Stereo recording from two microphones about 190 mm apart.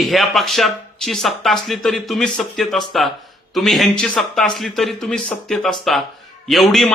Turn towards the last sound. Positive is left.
turn(degrees=0)  # may be behind; listen again after turning